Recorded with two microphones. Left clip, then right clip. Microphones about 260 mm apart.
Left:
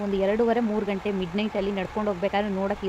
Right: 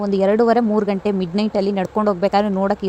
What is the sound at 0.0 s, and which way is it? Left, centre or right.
A woman's voice, right.